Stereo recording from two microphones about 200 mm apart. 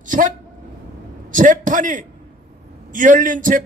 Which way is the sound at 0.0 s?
40° right (ahead or behind).